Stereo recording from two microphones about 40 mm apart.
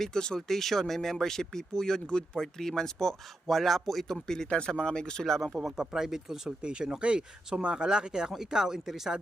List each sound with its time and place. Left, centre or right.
0.0 s speech: centre
4.4 s speech: left
5.7 s speech: centre
6.6 s speech: right